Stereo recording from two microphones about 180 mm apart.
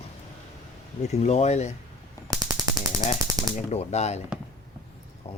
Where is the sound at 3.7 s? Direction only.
35° left (ahead or behind).